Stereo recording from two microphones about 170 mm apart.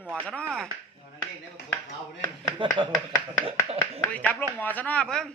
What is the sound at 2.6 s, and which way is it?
Speech, 30° right (ahead or behind).